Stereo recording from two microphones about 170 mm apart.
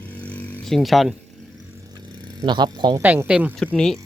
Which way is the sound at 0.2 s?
5° left (ahead or behind).